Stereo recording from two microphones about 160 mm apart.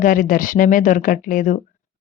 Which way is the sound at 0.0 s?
55° left (ahead or behind).